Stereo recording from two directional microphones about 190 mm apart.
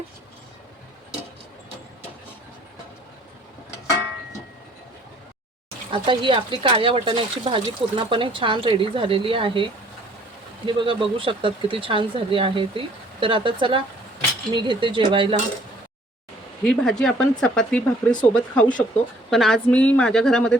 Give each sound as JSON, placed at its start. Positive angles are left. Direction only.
{"t": 5.9, "sound": "speech", "side_deg": -25}
{"t": 10.7, "sound": "speech", "side_deg": -25}
{"t": 16.6, "sound": "speech", "side_deg": 5}